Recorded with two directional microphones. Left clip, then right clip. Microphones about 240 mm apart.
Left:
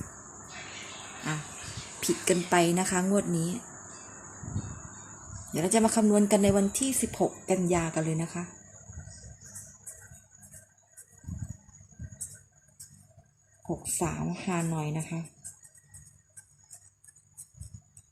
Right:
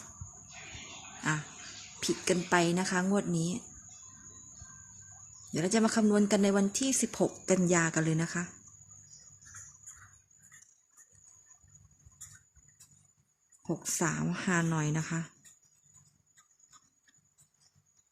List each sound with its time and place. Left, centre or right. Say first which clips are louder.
2.0 s speech: left 3 dB; centre
5.5 s speech: left 4 dB; centre
13.8 s a woman's voice: right 1 dB; right